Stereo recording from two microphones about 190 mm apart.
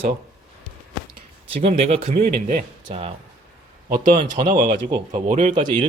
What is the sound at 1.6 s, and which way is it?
Speech, 30° right (ahead or behind).